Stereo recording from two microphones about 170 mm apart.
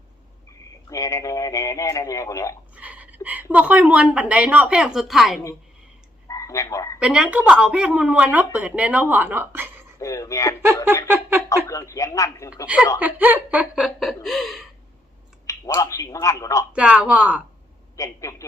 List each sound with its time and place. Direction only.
0.9 s speech: 20° left (ahead or behind)
2.7 s speech: 10° right (ahead or behind)
6.2 s frog: 20° left (ahead or behind)
7.0 s speech: 5° right (ahead or behind)
10.0 s speech: 20° left (ahead or behind)
11.1 s a sound: 10° right (ahead or behind)
11.4 s speech: 20° left (ahead or behind)
13.0 s speech: 10° right (ahead or behind)
15.4 s speech: 20° left (ahead or behind)
16.7 s speech: 5° right (ahead or behind)
17.9 s speech: 20° left (ahead or behind)